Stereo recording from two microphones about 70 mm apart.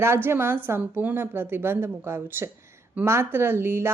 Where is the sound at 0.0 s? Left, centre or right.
Right.